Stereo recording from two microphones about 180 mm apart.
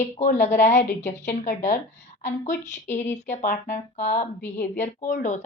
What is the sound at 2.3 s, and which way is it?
A woman's voice, 40° left (ahead or behind).